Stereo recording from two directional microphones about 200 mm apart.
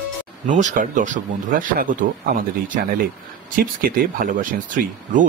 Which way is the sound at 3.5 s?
45° right (ahead or behind).